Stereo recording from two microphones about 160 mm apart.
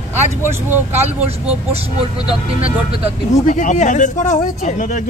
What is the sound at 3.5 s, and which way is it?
Speech, 55° left (ahead or behind).